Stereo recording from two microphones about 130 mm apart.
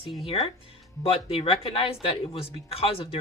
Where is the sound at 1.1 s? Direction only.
45° left (ahead or behind).